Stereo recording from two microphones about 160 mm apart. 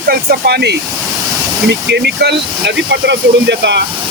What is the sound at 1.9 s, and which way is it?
Speech, 90° right.